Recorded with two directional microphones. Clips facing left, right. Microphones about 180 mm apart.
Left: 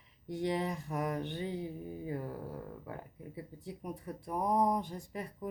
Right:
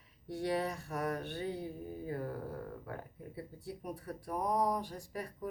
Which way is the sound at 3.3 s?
20° left (ahead or behind).